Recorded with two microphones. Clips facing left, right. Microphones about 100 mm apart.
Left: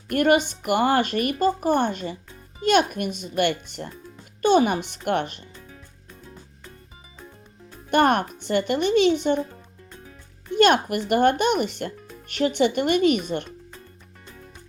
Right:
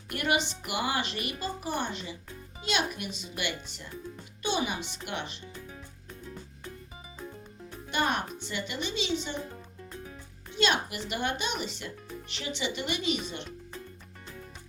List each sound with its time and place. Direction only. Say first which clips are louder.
0.1 s speech: left 10 dB; 50° left (ahead or behind)
7.9 s speech: left 10 dB; 55° left (ahead or behind)
10.5 s speech: left 10 dB; 55° left (ahead or behind)